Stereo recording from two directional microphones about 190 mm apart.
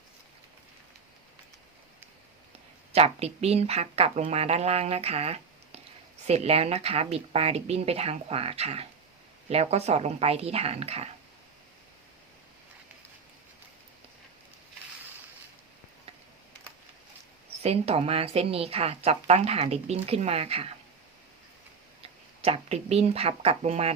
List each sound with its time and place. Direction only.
2.9 s speech: 35° right (ahead or behind)
17.6 s speech: 30° right (ahead or behind)
22.0 s speech: 30° right (ahead or behind)